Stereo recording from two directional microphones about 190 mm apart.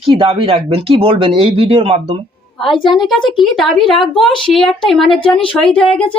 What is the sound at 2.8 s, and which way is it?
A woman's voice, centre (ahead or behind).